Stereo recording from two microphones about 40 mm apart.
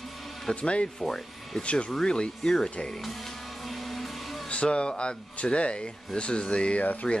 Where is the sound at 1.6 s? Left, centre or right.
Left; by 2.6 s centre.